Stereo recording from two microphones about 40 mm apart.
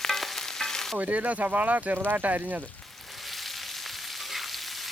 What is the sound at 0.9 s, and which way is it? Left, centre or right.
Speech, right.